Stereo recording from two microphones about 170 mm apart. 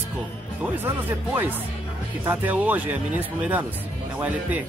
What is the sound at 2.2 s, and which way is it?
Speech, 10° right (ahead or behind).